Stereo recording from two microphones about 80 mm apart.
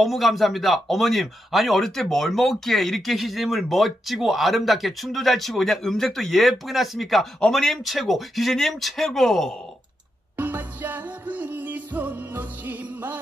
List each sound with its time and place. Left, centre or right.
0.0 s speech: centre
10.3 s music: right